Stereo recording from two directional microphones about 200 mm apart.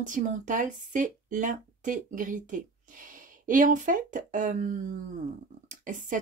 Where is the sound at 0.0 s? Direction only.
40° right (ahead or behind).